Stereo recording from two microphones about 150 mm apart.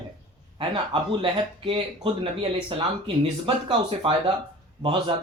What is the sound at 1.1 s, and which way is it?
Speech, 35° right (ahead or behind).